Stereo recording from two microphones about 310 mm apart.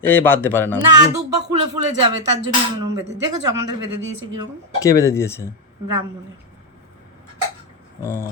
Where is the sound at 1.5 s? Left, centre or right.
Right.